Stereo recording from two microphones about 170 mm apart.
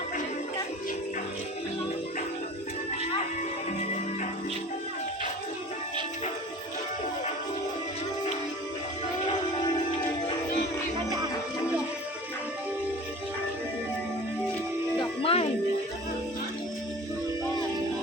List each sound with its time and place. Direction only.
15.2 s music: 35° left (ahead or behind)